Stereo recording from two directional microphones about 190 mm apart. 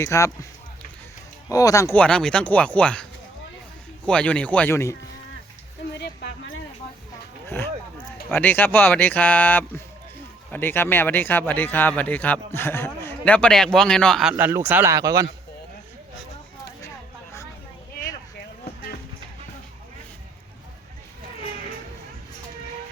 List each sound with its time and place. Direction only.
0.0 s speech: 15° left (ahead or behind)
1.5 s speech: 20° left (ahead or behind)
6.0 s a sound: 75° left (ahead or behind)
8.3 s speech: 10° left (ahead or behind)
14.3 s speech: 10° right (ahead or behind)